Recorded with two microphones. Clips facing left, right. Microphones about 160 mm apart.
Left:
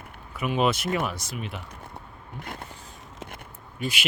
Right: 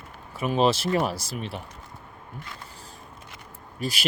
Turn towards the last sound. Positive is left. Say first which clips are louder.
# even
turn(degrees=-35)  # may be behind; listen again after turning